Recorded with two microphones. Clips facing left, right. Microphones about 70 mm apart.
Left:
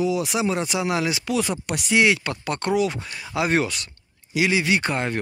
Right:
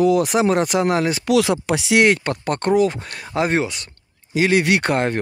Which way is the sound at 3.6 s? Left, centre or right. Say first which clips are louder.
Right 1 dB; right.